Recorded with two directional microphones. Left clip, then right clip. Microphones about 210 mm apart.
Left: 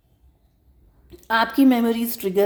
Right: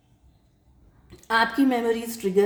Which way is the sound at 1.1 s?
35° left (ahead or behind).